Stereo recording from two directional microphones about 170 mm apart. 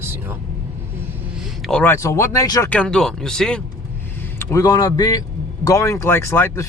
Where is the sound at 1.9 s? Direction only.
20° left (ahead or behind).